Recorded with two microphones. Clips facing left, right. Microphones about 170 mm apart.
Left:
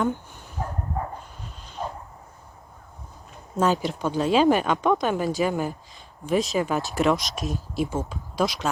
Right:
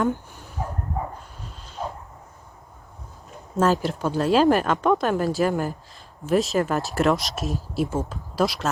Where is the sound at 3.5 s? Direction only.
Centre (ahead or behind).